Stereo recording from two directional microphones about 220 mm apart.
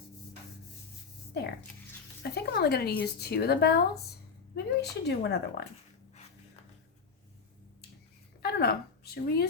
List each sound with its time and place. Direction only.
2.3 s speech: 45° left (ahead or behind)
8.4 s a woman's voice: 45° left (ahead or behind)